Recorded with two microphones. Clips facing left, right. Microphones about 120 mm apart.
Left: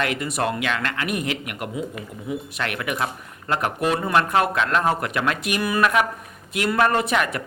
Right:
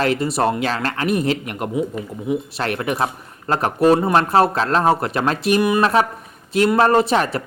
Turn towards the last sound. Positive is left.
turn(degrees=-30)  # may be behind; listen again after turning